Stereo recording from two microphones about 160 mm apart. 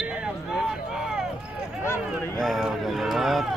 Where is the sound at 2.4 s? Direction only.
Centre (ahead or behind).